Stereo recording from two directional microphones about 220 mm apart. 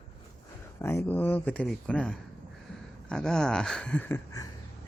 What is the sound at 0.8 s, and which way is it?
Speech, 10° left (ahead or behind).